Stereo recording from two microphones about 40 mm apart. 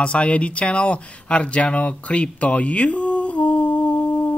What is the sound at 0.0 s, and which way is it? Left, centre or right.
Speech, left.